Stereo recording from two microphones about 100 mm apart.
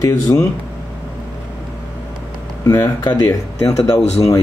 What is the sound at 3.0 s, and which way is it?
Speech, 45° left (ahead or behind).